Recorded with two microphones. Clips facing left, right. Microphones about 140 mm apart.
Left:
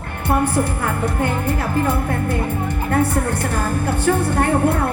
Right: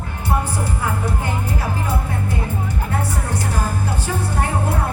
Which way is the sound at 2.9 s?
55° left (ahead or behind).